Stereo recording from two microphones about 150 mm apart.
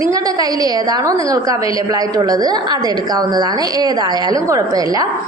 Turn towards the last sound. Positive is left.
turn(degrees=-25)  # may be behind; listen again after turning